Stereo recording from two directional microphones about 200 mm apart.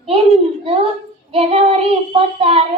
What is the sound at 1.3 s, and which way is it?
Child singing, 30° right (ahead or behind).